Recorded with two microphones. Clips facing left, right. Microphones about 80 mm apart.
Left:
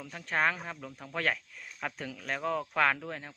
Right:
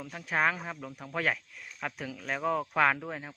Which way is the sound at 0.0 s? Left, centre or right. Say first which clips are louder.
Right 1 dB; centre.